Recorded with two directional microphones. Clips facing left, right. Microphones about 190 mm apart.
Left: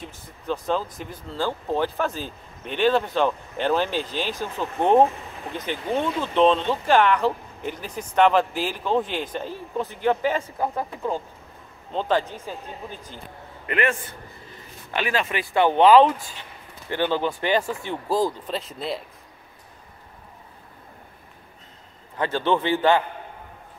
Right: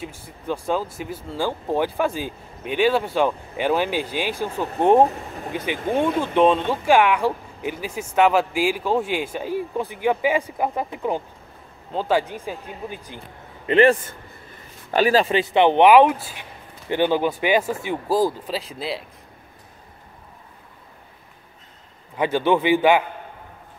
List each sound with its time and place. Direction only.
0.0 s speech: 10° right (ahead or behind)
5.5 s speech: 10° right (ahead or behind)
13.7 s speech: 30° right (ahead or behind); by 19.0 s centre (ahead or behind)
22.1 s speech: 10° right (ahead or behind)